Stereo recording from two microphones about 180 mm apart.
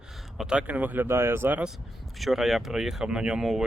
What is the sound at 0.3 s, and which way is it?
Speech, 5° right (ahead or behind).